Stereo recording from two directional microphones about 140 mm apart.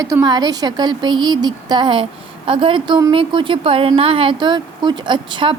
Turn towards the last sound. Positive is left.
turn(degrees=-35)  # may be behind; listen again after turning